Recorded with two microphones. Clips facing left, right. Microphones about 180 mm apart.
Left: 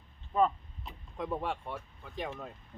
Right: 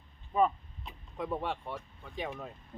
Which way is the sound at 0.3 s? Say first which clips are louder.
Even; 5° right (ahead or behind).